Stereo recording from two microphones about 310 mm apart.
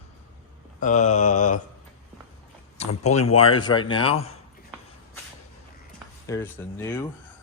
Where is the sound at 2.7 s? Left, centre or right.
Left.